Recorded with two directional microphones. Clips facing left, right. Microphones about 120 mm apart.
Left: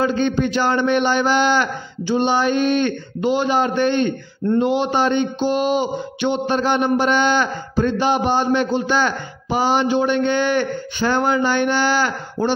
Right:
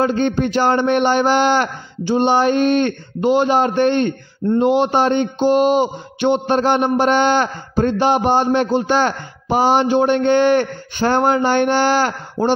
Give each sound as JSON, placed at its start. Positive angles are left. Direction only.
{"t": 0.0, "sound": "a man's voice", "side_deg": -45}
{"t": 9.0, "sound": "speech", "side_deg": -35}
{"t": 9.8, "sound": "a man's voice", "side_deg": -50}
{"t": 11.9, "sound": "speech", "side_deg": -35}